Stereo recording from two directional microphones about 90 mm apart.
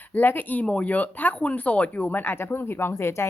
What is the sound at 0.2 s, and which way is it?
Speech, 20° left (ahead or behind).